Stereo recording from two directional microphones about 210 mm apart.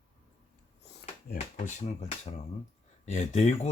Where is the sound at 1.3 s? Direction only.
35° left (ahead or behind).